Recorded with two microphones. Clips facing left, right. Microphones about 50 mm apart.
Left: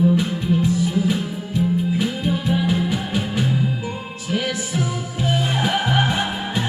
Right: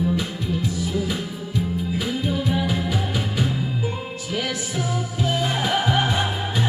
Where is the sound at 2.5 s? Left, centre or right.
Centre.